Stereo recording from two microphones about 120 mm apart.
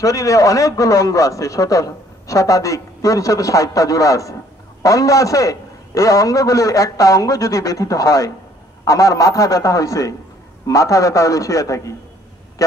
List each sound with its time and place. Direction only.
0.0 s a man's voice: 30° left (ahead or behind)